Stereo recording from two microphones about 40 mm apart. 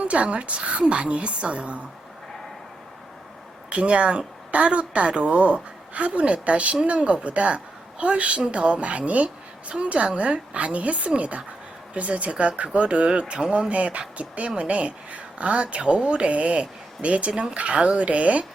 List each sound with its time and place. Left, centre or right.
0.0 s a woman's voice: right
3.7 s a woman's voice: right